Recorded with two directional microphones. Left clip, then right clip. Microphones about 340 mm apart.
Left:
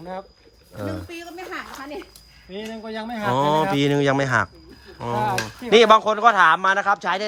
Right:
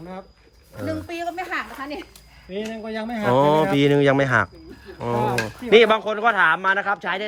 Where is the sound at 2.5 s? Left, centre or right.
Centre.